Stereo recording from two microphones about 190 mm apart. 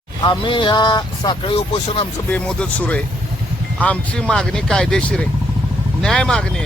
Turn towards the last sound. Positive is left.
turn(degrees=5)  # may be behind; listen again after turning